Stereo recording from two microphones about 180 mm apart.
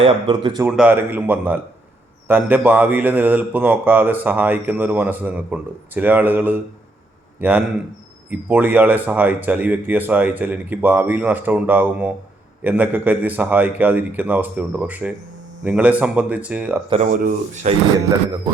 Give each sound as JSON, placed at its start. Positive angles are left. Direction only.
{"t": 0.0, "sound": "speech", "side_deg": -30}
{"t": 0.7, "sound": "speech", "side_deg": -5}
{"t": 16.9, "sound": "speech", "side_deg": -40}